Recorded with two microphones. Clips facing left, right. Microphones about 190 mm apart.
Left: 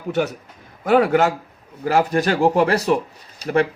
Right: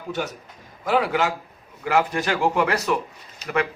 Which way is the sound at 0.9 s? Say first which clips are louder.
Left 6 dB; 50° left (ahead or behind).